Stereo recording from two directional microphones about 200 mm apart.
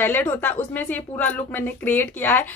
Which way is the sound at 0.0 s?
10° left (ahead or behind).